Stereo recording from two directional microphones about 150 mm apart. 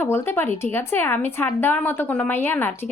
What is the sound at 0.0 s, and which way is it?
Speech, 15° left (ahead or behind).